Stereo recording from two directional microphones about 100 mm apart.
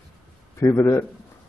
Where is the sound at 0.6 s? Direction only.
30° left (ahead or behind).